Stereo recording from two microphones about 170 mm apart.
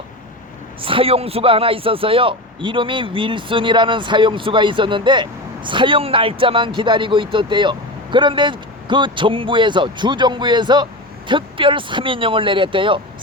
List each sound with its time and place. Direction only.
0.8 s a man's voice: 30° right (ahead or behind)